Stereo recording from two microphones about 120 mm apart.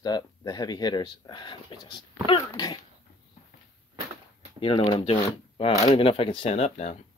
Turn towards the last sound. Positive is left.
turn(degrees=65)  # may be behind; listen again after turning